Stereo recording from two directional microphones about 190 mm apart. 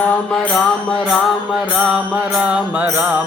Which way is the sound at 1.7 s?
5° right (ahead or behind).